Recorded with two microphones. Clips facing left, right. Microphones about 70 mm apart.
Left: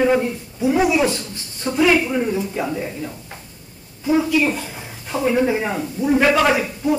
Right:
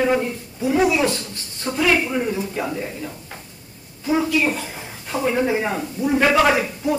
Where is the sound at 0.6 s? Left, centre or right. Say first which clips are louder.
Left 1 dB; centre.